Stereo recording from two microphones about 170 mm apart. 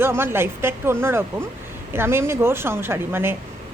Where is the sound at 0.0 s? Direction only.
15° right (ahead or behind).